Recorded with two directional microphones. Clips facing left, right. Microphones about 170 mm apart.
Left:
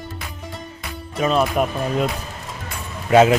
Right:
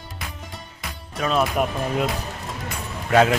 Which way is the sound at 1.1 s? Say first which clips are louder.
Left 3 dB; 5° left (ahead or behind).